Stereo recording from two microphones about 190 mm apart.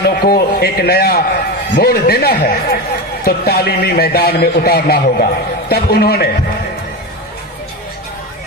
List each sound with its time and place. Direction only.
0.0 s speech: 55° left (ahead or behind)